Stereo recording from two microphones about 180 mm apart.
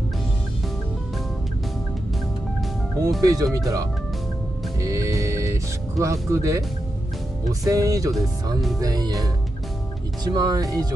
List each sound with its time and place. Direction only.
3.2 s speech: 20° right (ahead or behind)
4.7 s music: 15° right (ahead or behind)
6.3 s speech: 15° right (ahead or behind)
7.6 s speech: 20° right (ahead or behind)